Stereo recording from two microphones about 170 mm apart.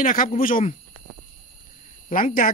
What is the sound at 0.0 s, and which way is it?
Speech, 55° left (ahead or behind).